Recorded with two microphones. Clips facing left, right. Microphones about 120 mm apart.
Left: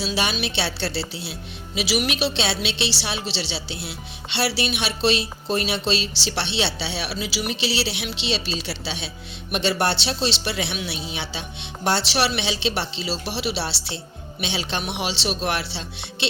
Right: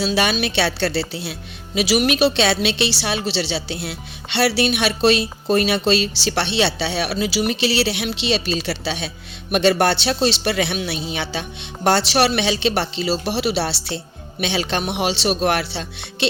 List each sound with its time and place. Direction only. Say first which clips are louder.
0.0 s speech: right 5 dB; 55° right (ahead or behind)